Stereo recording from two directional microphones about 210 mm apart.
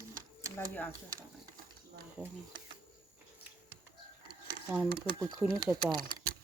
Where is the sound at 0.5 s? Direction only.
10° left (ahead or behind).